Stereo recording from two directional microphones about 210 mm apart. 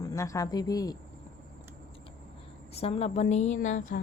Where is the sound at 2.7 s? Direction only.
30° left (ahead or behind).